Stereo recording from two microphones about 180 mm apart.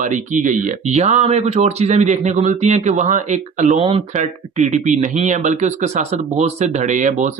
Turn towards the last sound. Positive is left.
turn(degrees=-45)  # may be behind; listen again after turning